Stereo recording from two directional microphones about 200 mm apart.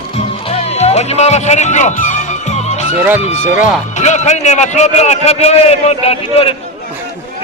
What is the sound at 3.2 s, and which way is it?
Speech, 35° left (ahead or behind).